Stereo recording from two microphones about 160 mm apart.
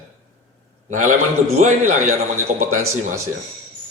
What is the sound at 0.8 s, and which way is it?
A man's voice, 50° right (ahead or behind).